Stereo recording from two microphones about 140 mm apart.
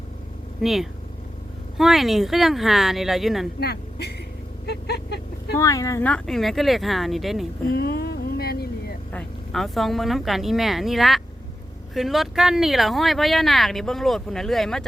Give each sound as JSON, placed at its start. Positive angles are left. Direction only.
{"t": 0.6, "sound": "speech", "side_deg": 0}
{"t": 5.5, "sound": "speech", "side_deg": 20}
{"t": 6.1, "sound": "speech", "side_deg": 5}
{"t": 7.7, "sound": "a sound", "side_deg": 90}
{"t": 9.1, "sound": "speech", "side_deg": 0}